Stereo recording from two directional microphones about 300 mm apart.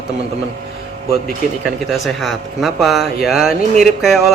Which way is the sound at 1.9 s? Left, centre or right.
Centre.